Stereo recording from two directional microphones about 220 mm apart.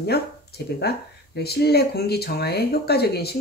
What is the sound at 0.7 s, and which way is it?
Speech, 50° left (ahead or behind).